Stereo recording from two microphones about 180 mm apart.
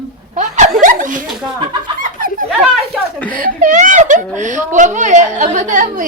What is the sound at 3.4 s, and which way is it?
Speech, 45° right (ahead or behind).